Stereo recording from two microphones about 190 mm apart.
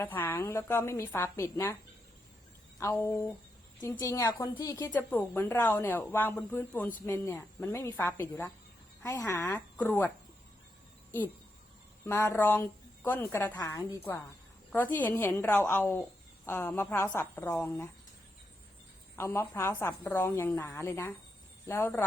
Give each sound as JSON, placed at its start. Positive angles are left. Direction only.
{"t": 0.0, "sound": "a woman's voice", "side_deg": 10}
{"t": 2.7, "sound": "a woman's voice", "side_deg": 15}
{"t": 12.0, "sound": "a woman's voice", "side_deg": 10}
{"t": 19.1, "sound": "a woman's voice", "side_deg": 15}